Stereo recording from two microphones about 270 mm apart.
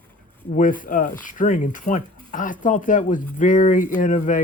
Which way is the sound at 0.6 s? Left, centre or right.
Left.